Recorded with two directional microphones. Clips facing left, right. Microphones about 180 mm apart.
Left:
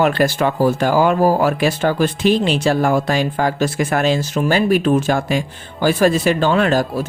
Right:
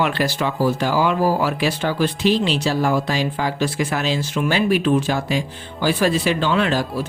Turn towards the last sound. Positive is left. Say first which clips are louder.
# left 4 dB
turn(degrees=45)  # may be behind; listen again after turning